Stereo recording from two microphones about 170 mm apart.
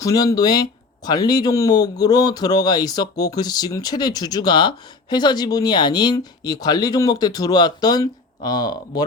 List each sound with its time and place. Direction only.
0.0 s speech: 20° left (ahead or behind)